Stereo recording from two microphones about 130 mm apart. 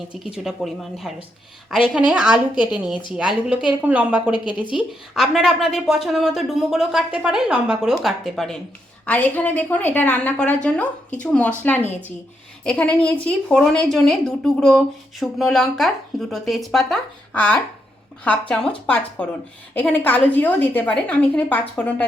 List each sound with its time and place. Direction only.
0.1 s a woman's voice: 5° right (ahead or behind)
4.3 s a woman's voice: 35° left (ahead or behind)
4.7 s speech: 5° right (ahead or behind)
9.0 s a woman's voice: 10° left (ahead or behind)
17.3 s a woman's voice: 10° left (ahead or behind)